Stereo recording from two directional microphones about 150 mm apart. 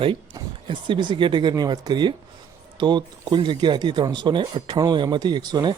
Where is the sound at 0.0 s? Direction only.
35° right (ahead or behind).